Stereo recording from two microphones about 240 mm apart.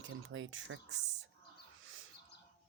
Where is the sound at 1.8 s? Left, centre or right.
Right.